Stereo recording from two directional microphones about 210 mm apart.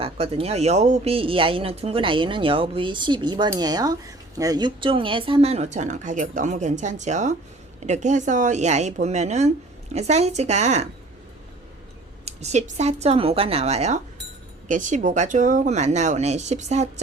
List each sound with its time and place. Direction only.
0.0 s speech: 30° right (ahead or behind)
12.2 s speech: 30° right (ahead or behind)